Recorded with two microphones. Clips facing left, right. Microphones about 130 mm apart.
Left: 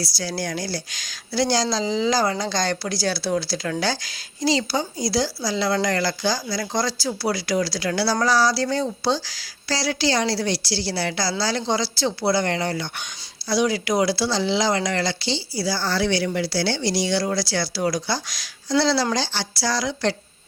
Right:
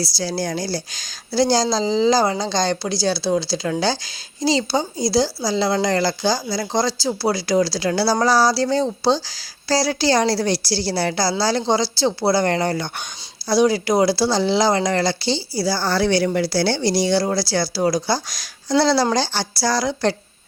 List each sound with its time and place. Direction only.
0.0 s speech: 30° right (ahead or behind)